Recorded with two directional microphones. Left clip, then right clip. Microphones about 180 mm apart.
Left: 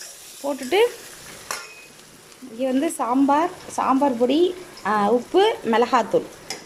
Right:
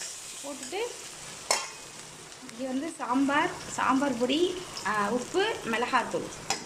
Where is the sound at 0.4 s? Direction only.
45° left (ahead or behind).